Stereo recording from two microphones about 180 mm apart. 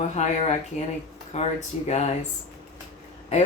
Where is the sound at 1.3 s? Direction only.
40° left (ahead or behind).